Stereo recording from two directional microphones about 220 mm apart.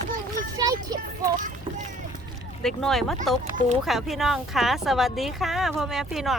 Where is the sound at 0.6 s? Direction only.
15° right (ahead or behind).